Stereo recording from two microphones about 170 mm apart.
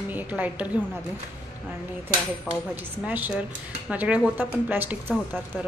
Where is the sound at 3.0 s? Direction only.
10° right (ahead or behind).